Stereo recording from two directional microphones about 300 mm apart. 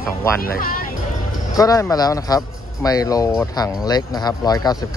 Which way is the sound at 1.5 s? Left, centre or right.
Centre.